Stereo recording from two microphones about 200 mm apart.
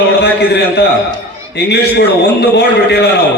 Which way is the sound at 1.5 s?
55° left (ahead or behind).